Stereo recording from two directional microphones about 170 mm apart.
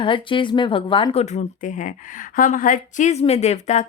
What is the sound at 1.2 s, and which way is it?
A woman's voice, 45° left (ahead or behind).